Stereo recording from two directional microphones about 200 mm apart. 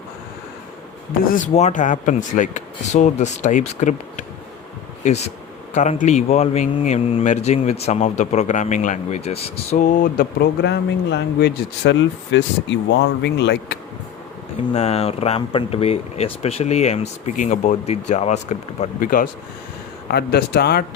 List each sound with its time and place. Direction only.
1.3 s speech: 40° left (ahead or behind)
5.7 s speech: 35° left (ahead or behind); by 13.7 s 60° left (ahead or behind)
14.7 s speech: 35° left (ahead or behind); by 20.8 s 55° left (ahead or behind)